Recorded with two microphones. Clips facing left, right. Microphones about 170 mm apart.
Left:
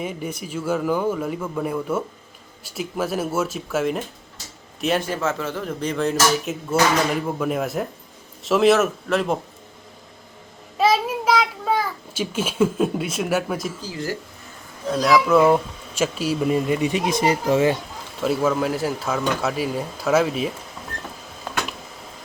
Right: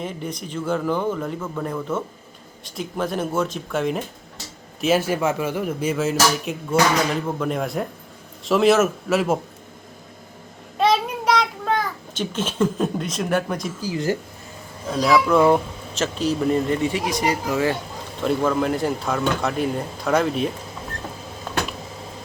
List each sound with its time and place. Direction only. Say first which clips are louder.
0.0 s speech: left 1 dB; 5° left (ahead or behind)
10.8 s a sound: even; 5° left (ahead or behind)
13.8 s speech: right 5 dB; 20° right (ahead or behind)
14.8 s speech: even; centre (ahead or behind); by 17.7 s 25° left (ahead or behind)
18.2 s speech: even; 5° left (ahead or behind)